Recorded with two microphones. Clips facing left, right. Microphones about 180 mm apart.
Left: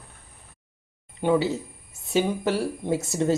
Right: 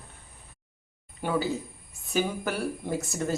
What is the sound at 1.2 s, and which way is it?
Speech, 25° left (ahead or behind).